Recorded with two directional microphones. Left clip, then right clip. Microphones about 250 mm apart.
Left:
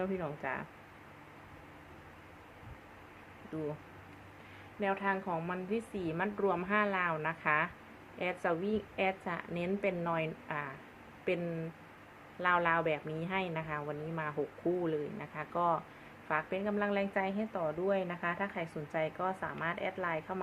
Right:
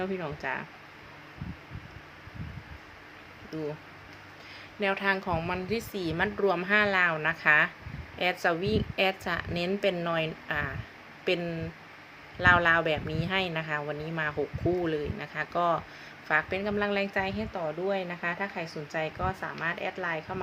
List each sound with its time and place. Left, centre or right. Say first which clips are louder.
0.0 s a woman's voice: right 4 dB; centre
4.8 s a woman's voice: right 6 dB; centre
12.4 s a woman's voice: right 8 dB; centre